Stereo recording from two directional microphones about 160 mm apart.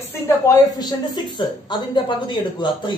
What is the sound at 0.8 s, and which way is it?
Speech, 25° left (ahead or behind).